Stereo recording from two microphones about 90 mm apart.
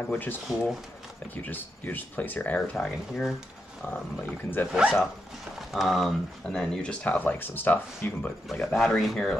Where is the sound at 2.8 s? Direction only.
Centre (ahead or behind).